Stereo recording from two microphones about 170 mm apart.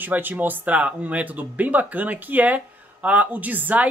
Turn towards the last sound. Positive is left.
turn(degrees=-10)  # may be behind; listen again after turning